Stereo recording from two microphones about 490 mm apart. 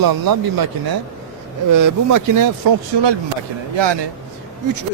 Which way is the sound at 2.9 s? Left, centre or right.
Right.